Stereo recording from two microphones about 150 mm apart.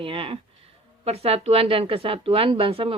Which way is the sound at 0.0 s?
35° right (ahead or behind).